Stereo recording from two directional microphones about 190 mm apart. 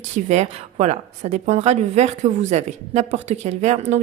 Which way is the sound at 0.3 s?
35° right (ahead or behind).